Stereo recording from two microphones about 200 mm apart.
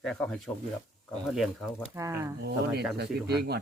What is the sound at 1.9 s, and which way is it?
Speech, 15° right (ahead or behind).